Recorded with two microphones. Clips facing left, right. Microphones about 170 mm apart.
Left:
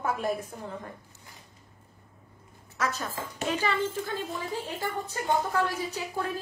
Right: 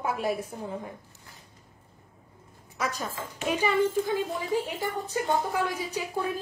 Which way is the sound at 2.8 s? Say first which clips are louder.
Even; 15° right (ahead or behind).